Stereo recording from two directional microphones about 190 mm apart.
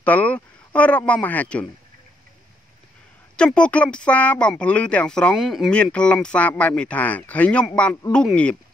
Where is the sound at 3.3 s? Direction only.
5° left (ahead or behind).